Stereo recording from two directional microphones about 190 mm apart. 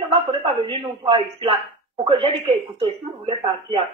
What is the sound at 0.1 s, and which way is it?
A man's voice, 25° right (ahead or behind).